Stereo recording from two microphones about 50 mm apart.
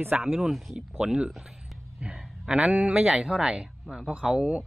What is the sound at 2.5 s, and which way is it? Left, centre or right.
A man's voice, right.